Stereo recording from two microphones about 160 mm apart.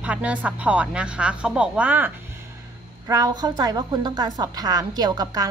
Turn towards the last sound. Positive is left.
turn(degrees=-25)  # may be behind; listen again after turning